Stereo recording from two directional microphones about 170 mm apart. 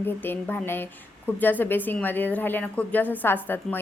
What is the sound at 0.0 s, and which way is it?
A woman's voice, 10° left (ahead or behind).